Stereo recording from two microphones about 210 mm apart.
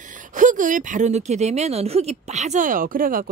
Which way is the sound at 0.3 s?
40° right (ahead or behind).